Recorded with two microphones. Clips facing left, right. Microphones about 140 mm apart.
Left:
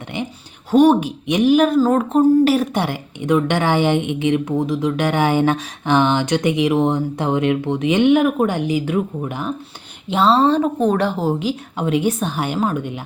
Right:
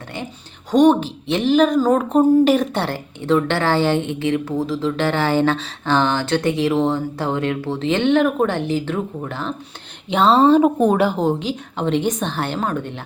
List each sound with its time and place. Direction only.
0.1 s a woman's voice: 20° left (ahead or behind)
10.1 s speech: centre (ahead or behind)
10.6 s a woman's voice: 10° right (ahead or behind); by 13.0 s 10° left (ahead or behind)